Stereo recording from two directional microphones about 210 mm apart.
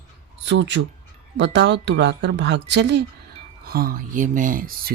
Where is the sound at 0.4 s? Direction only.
60° right (ahead or behind).